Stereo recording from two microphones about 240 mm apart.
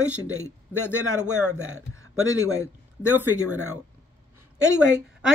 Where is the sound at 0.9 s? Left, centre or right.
Centre.